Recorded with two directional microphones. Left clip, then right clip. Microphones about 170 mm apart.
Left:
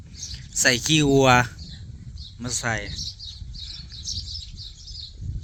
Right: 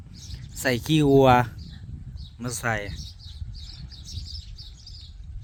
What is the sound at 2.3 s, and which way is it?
Speech, 35° right (ahead or behind).